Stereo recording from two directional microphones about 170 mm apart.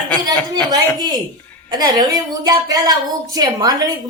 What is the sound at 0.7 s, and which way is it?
Music, 20° right (ahead or behind).